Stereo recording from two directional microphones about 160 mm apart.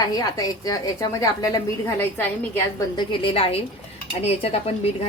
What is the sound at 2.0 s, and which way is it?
Speech, 10° left (ahead or behind).